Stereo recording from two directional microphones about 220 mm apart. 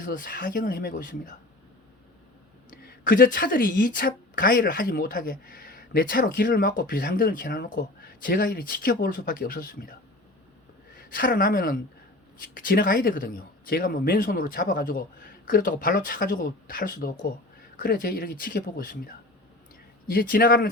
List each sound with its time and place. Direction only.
0.0 s a woman's voice: 40° left (ahead or behind)
2.8 s a woman's voice: 40° left (ahead or behind)
10.9 s a woman's voice: 40° left (ahead or behind)